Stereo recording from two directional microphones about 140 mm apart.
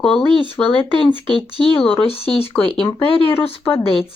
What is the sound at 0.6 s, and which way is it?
A woman's voice, 40° left (ahead or behind).